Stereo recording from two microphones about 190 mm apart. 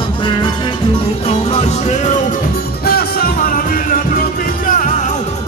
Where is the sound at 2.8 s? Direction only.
50° left (ahead or behind).